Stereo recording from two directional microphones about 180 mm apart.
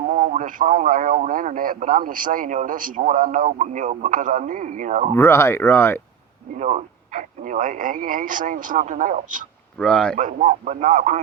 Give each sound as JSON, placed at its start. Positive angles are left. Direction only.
{"t": 0.1, "sound": "a man's voice", "side_deg": -45}
{"t": 5.1, "sound": "speech", "side_deg": 15}
{"t": 6.6, "sound": "a man's voice", "side_deg": -40}
{"t": 9.7, "sound": "speech", "side_deg": 5}
{"t": 10.2, "sound": "a man's voice", "side_deg": -45}